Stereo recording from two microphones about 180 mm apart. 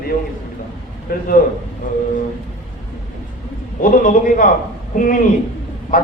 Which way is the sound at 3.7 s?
50° left (ahead or behind).